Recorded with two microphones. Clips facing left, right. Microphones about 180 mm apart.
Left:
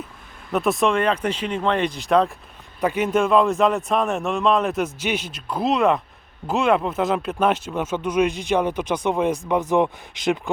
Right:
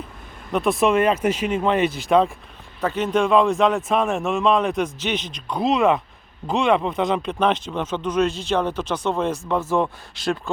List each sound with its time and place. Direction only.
0.5 s a man's voice: centre (ahead or behind)
2.8 s a man's voice: 10° left (ahead or behind)